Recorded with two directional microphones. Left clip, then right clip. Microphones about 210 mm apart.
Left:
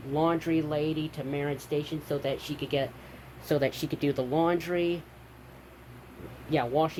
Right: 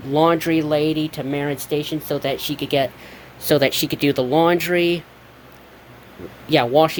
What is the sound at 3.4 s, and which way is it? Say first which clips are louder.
Speech: right 11 dB; 40° right (ahead or behind).